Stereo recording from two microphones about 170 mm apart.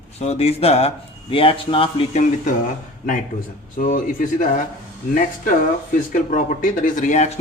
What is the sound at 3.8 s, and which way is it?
Speech, 50° left (ahead or behind).